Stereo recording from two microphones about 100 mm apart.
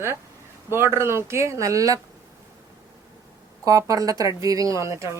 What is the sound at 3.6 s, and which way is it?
Speech, 35° right (ahead or behind).